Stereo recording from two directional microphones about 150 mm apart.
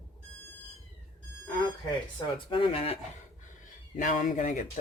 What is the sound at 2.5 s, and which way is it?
Speech, 35° left (ahead or behind).